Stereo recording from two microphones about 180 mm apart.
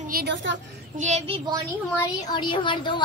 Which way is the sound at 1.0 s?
40° right (ahead or behind).